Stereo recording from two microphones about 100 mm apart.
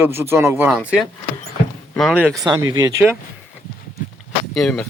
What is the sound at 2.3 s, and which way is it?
Speech, 40° right (ahead or behind).